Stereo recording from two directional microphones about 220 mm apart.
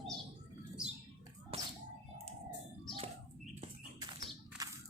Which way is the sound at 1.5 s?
25° right (ahead or behind).